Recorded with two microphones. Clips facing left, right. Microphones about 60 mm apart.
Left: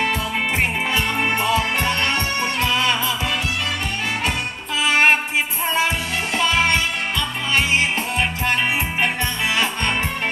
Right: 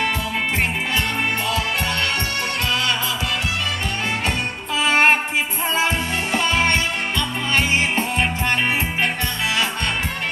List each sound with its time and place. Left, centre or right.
0.9 s music: left
4.8 s music: centre
6.3 s music: centre